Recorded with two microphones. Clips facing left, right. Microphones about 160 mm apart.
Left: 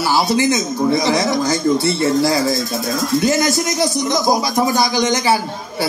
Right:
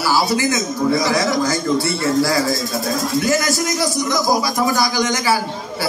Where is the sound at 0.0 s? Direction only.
20° left (ahead or behind).